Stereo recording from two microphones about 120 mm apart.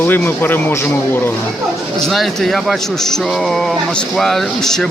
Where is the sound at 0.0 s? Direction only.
15° left (ahead or behind).